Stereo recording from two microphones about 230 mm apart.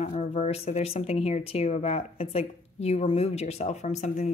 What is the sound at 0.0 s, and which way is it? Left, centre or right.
Speech, left.